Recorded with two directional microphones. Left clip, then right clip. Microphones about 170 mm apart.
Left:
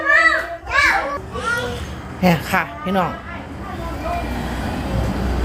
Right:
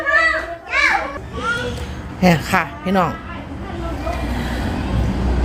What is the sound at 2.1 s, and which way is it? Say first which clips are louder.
Speech: right 2 dB; 20° right (ahead or behind).